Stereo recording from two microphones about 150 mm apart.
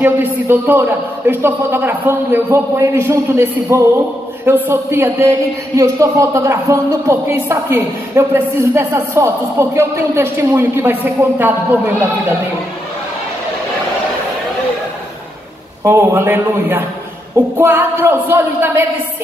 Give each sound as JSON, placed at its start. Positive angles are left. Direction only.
{"t": 0.0, "sound": "speech", "side_deg": -15}
{"t": 15.8, "sound": "speech", "side_deg": -15}